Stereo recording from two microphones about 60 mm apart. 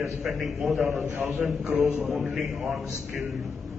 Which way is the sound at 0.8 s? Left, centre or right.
Right.